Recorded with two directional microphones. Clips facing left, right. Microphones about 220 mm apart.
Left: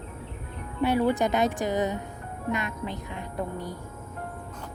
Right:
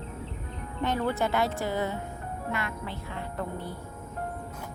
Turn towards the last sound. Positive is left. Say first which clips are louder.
# left 2 dB
turn(degrees=15)  # may be behind; listen again after turning